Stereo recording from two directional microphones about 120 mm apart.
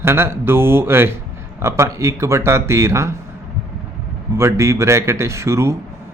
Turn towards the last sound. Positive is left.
turn(degrees=-25)  # may be behind; listen again after turning